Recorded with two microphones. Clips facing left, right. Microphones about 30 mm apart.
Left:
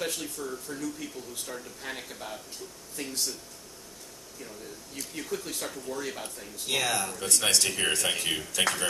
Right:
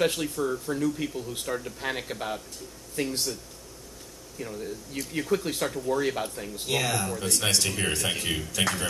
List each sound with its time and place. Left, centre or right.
0.0 s speech: right
3.0 s speech: centre
4.4 s speech: right
6.6 s speech: centre